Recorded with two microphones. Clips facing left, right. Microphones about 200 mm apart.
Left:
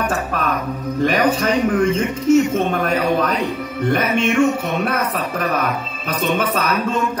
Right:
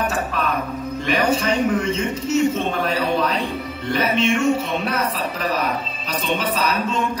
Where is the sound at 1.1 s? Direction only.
30° right (ahead or behind).